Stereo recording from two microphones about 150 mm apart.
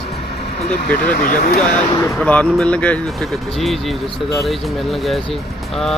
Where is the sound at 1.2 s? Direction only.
75° left (ahead or behind).